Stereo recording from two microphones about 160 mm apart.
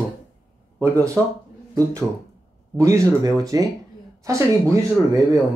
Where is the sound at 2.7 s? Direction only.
20° right (ahead or behind).